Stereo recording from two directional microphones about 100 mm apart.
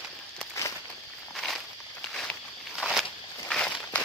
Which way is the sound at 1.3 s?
Centre (ahead or behind).